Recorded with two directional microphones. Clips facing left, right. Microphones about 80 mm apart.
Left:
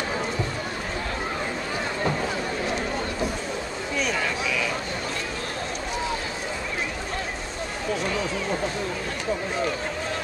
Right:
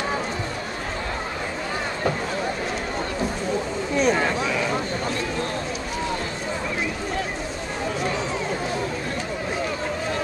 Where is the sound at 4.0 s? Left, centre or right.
Right.